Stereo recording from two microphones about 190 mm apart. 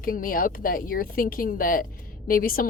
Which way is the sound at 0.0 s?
45° left (ahead or behind).